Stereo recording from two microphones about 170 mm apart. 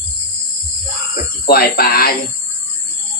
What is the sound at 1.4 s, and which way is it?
Speech, 65° left (ahead or behind).